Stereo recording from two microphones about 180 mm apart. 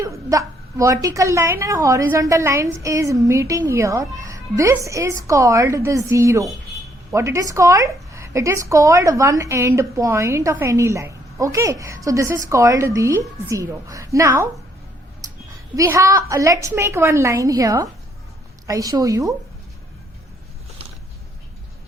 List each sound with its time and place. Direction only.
0.0 s a woman's voice: 15° right (ahead or behind)
15.7 s a woman's voice: 15° right (ahead or behind)